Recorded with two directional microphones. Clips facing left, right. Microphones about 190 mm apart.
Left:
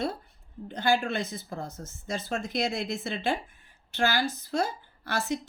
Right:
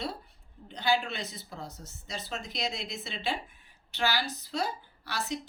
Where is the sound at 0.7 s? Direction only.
50° left (ahead or behind).